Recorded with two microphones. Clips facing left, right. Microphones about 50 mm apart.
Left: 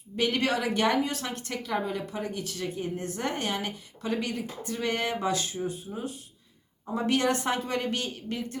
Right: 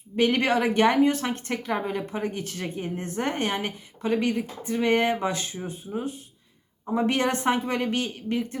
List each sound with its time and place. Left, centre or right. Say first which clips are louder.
0.2 s speech: right 5 dB; right
5.9 s speech: right 5 dB; centre